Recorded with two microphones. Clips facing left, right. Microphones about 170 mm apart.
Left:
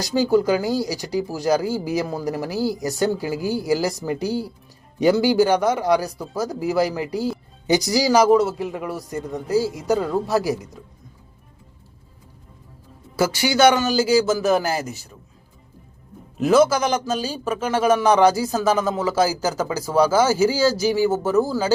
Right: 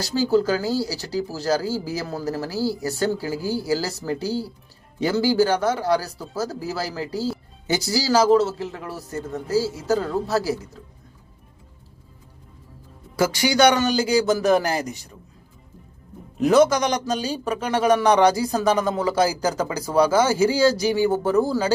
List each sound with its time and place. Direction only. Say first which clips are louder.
0.0 s speech: left 2 dB; 15° left (ahead or behind)
13.1 s a man's voice: even; 5° left (ahead or behind)
16.4 s a man's voice: even; 5° left (ahead or behind)